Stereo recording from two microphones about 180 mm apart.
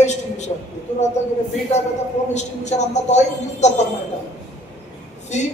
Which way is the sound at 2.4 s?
40° left (ahead or behind).